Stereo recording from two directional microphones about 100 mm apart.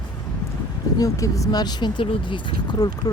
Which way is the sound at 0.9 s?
35° left (ahead or behind).